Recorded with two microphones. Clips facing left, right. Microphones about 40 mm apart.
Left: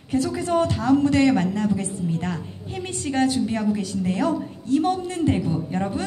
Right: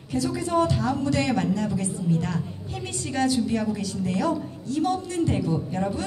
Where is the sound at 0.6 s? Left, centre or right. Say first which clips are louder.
Left 5 dB; centre.